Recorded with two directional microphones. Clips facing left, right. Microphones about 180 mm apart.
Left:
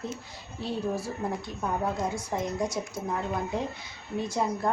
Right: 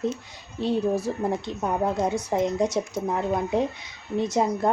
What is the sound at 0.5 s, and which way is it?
A woman's voice, 20° right (ahead or behind).